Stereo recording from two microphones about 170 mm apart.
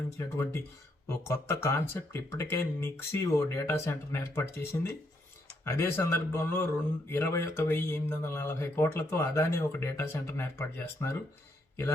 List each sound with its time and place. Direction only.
0.2 s speech: 15° left (ahead or behind)